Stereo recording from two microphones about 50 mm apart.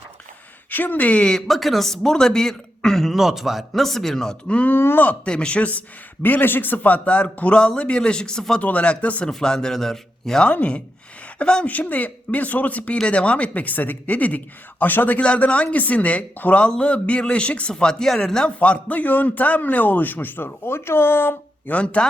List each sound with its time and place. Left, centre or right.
0.7 s a man's voice: left
1.2 s speech: centre
3.2 s speech: centre
4.4 s speech: left
4.7 s speech: left
5.2 s speech: left
6.2 s a man's voice: left; by 8.6 s centre
8.6 s speech: left
9.2 s speech: centre
10.4 s speech: left
11.7 s a man's voice: left
15.2 s speech: left
18.6 s a man's voice: left
21.7 s speech: left